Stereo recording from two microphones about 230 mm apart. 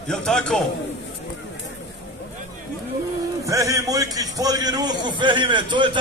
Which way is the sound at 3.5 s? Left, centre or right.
Centre.